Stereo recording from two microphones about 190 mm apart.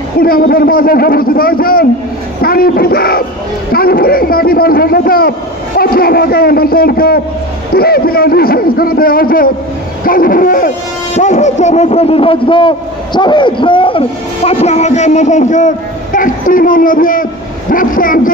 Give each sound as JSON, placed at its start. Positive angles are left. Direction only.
{"t": 0.2, "sound": "a man's voice", "side_deg": 50}